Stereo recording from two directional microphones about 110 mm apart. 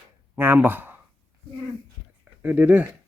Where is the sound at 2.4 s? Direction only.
15° right (ahead or behind).